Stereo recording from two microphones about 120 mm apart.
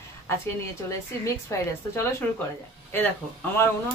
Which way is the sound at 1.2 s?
20° left (ahead or behind).